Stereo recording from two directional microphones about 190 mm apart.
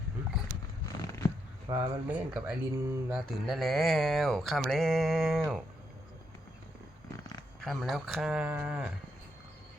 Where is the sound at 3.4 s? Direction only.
Centre (ahead or behind).